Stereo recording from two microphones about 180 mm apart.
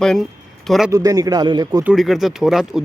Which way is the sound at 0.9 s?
20° right (ahead or behind).